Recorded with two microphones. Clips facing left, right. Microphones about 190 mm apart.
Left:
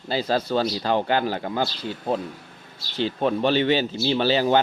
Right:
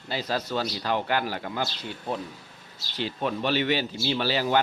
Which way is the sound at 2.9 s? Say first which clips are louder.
Left 6 dB; 30° left (ahead or behind).